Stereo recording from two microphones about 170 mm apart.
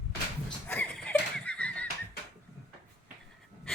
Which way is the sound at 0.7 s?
10° left (ahead or behind).